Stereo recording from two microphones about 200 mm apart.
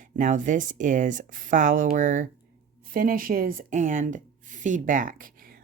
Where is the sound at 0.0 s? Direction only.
40° right (ahead or behind).